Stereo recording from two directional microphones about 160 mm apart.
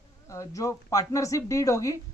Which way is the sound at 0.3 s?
20° left (ahead or behind).